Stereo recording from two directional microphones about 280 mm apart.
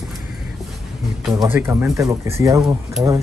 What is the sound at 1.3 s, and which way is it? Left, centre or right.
Speech, centre.